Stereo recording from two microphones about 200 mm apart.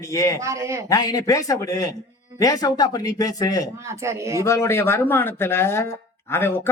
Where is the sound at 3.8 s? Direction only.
15° right (ahead or behind).